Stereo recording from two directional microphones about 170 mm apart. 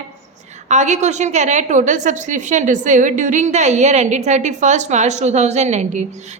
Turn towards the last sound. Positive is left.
turn(degrees=-45)  # may be behind; listen again after turning